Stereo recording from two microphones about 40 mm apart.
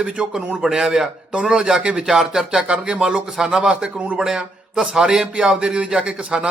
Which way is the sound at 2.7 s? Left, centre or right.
Centre.